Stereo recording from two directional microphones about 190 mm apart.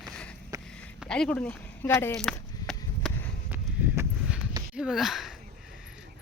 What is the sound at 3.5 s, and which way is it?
Clip-clop, 10° right (ahead or behind).